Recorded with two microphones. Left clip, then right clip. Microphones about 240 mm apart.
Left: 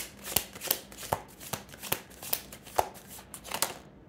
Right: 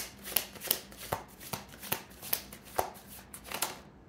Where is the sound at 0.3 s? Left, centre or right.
Left.